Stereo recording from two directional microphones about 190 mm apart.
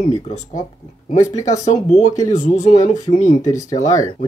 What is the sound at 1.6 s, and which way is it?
Speech, 40° left (ahead or behind).